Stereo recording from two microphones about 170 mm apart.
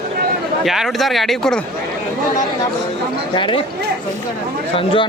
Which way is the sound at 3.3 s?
30° left (ahead or behind).